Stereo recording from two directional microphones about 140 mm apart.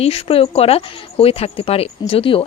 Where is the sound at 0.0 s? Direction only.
45° left (ahead or behind).